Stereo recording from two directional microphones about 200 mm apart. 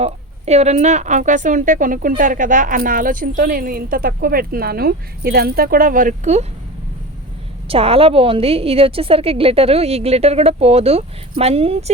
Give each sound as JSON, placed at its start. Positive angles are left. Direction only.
{"t": 0.0, "sound": "a woman's voice", "side_deg": -30}
{"t": 7.7, "sound": "a woman's voice", "side_deg": -30}